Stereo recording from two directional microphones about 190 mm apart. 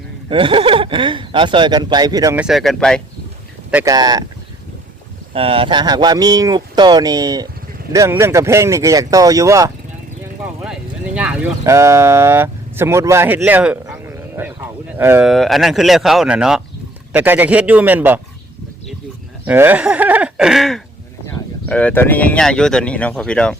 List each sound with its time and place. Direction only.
0.3 s speech: 25° right (ahead or behind)
2.4 s speech: centre (ahead or behind)
3.7 s speech: 10° right (ahead or behind)
3.9 s speech: 20° right (ahead or behind)
5.3 s speech: 30° right (ahead or behind)
10.4 s vehicle: 5° right (ahead or behind)
11.6 s speech: 15° right (ahead or behind)
15.3 s speech: centre (ahead or behind)
19.5 s speech: 10° right (ahead or behind)